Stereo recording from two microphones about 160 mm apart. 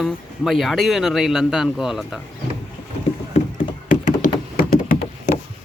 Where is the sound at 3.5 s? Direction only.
55° left (ahead or behind).